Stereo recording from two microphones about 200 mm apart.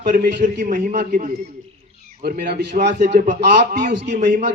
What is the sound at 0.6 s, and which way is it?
Speech, 40° right (ahead or behind).